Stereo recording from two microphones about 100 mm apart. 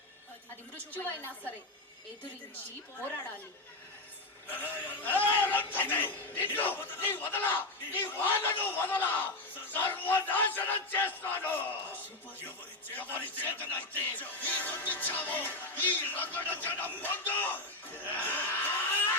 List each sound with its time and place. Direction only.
0.9 s speech: 20° left (ahead or behind)
4.7 s speech: 20° left (ahead or behind)
18.0 s a sound: 20° left (ahead or behind)